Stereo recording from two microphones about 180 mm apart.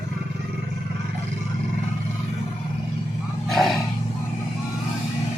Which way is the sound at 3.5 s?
Centre (ahead or behind).